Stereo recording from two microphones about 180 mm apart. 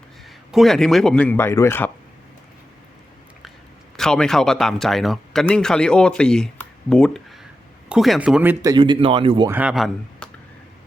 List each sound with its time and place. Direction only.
0.5 s speech: centre (ahead or behind)
3.9 s speech: 5° left (ahead or behind)
8.7 s speech: 25° right (ahead or behind)
9.5 s speech: 5° right (ahead or behind)